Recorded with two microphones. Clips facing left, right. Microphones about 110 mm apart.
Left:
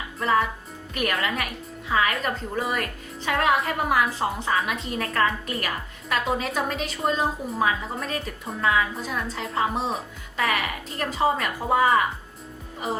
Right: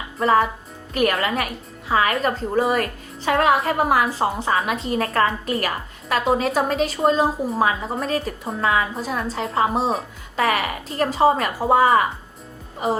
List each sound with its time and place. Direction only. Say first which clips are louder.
0.2 s a woman's voice: right 5 dB; 30° right (ahead or behind)